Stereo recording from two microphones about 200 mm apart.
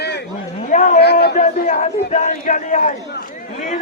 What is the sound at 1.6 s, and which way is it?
A man's voice, 35° left (ahead or behind).